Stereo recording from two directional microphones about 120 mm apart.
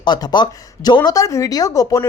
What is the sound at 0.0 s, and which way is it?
Speech, 35° left (ahead or behind).